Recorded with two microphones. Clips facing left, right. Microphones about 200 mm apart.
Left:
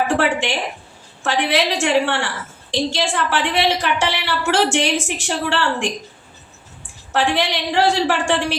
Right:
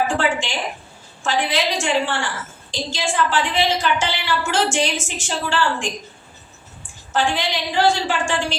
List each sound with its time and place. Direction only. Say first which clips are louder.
0.1 s a woman's voice: left 3 dB; 65° left (ahead or behind)
7.1 s a woman's voice: left 2 dB; 65° left (ahead or behind)